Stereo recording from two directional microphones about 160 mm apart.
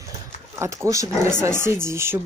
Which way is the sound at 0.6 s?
20° right (ahead or behind).